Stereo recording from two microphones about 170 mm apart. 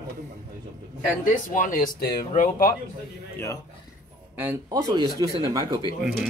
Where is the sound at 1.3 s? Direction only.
50° left (ahead or behind).